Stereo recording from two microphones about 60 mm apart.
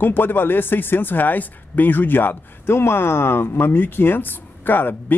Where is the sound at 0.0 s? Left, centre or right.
Left.